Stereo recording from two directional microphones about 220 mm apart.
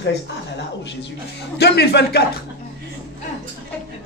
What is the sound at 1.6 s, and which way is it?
Speech, 50° left (ahead or behind).